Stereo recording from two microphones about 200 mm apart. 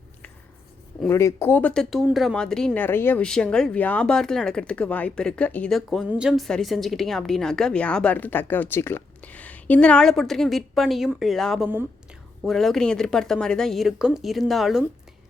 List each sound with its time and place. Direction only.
1.0 s speech: 15° left (ahead or behind)